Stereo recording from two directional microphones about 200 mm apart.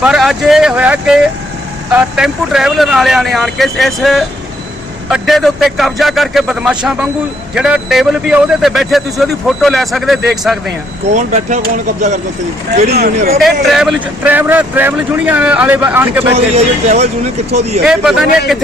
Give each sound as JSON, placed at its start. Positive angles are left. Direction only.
{"t": 0.0, "sound": "a man's voice", "side_deg": -5}
{"t": 11.1, "sound": "speech", "side_deg": -40}
{"t": 12.7, "sound": "speech", "side_deg": -35}
{"t": 13.4, "sound": "speech", "side_deg": 0}
{"t": 16.3, "sound": "speech", "side_deg": -30}
{"t": 17.8, "sound": "a man's voice", "side_deg": -5}